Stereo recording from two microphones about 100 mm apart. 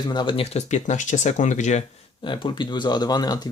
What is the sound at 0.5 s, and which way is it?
Speech, 90° left.